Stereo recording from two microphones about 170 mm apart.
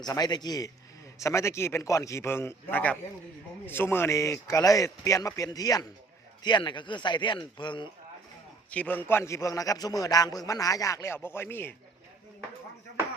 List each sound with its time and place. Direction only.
0.0 s a man's voice: 25° left (ahead or behind)
8.7 s a man's voice: 10° left (ahead or behind)